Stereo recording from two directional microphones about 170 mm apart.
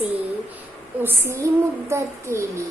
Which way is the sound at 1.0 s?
15° right (ahead or behind).